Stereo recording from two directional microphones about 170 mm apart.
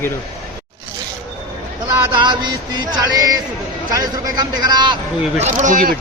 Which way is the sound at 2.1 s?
25° right (ahead or behind).